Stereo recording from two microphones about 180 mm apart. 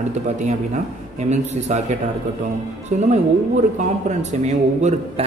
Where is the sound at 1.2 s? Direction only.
40° right (ahead or behind).